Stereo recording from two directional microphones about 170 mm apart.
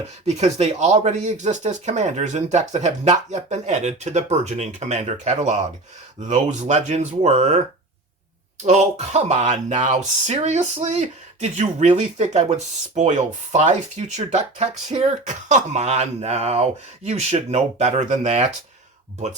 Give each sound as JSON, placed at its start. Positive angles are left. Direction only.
{"t": 0.3, "sound": "speech", "side_deg": -40}
{"t": 8.6, "sound": "speech", "side_deg": -40}